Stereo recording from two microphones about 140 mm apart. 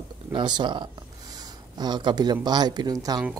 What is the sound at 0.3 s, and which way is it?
Speech, 35° right (ahead or behind).